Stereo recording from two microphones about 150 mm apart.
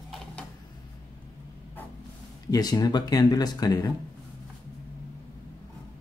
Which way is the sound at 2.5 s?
25° left (ahead or behind).